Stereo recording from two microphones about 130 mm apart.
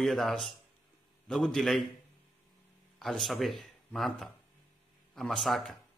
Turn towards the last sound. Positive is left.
turn(degrees=0)  # may be behind; listen again after turning